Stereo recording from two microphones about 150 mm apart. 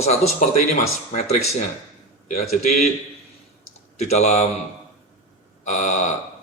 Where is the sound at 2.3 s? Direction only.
50° left (ahead or behind).